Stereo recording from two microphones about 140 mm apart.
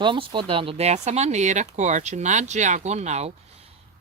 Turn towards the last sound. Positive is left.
turn(degrees=-55)  # may be behind; listen again after turning